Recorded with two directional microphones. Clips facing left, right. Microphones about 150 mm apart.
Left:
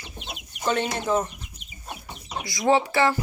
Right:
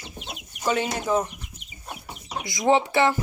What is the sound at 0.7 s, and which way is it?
Speech, 5° right (ahead or behind).